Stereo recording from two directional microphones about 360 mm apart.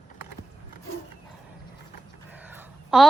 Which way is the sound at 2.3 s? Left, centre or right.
Centre.